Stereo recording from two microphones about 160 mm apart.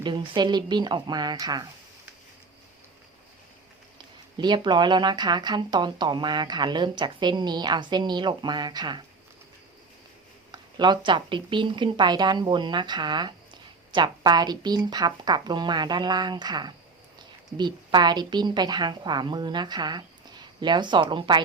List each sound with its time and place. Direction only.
0.0 s speech: 30° right (ahead or behind)
4.4 s speech: 30° right (ahead or behind)
10.5 s speech: 30° right (ahead or behind)